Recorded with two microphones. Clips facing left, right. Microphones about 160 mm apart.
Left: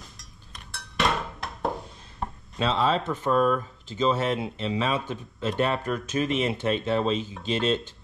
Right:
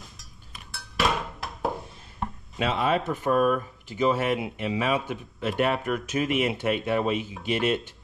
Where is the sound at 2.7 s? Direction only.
15° right (ahead or behind).